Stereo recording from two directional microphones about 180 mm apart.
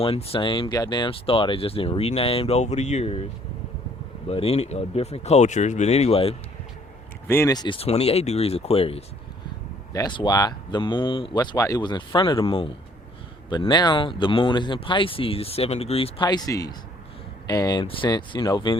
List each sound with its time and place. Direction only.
0.0 s speech: 30° left (ahead or behind)
4.3 s speech: 35° left (ahead or behind)
7.3 s speech: 15° left (ahead or behind)